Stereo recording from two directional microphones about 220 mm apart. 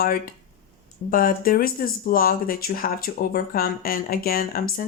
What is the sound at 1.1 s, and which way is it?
Speech, 40° left (ahead or behind).